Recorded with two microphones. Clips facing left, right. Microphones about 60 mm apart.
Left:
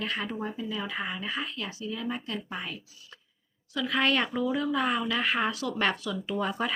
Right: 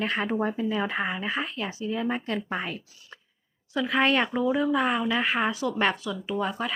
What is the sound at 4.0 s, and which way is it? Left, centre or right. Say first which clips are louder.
Speech: right 3 dB; centre.